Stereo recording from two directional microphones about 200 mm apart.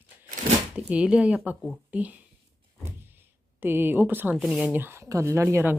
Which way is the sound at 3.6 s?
10° right (ahead or behind).